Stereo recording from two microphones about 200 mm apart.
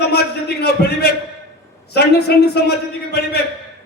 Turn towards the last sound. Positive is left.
turn(degrees=55)  # may be behind; listen again after turning